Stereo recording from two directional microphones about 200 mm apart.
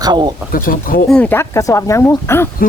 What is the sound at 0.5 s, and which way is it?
Speech, 45° left (ahead or behind).